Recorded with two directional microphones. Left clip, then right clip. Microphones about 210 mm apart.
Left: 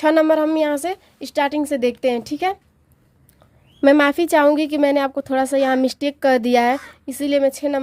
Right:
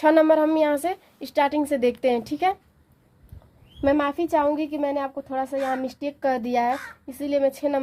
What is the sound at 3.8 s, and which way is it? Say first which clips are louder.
A woman's voice: left 8 dB; 40° left (ahead or behind).